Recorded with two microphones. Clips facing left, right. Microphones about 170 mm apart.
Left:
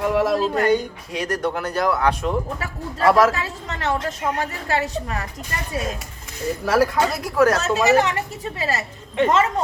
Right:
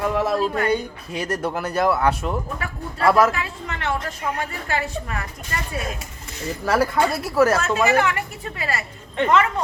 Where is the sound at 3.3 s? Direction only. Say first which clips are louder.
Left 1 dB; 30° left (ahead or behind).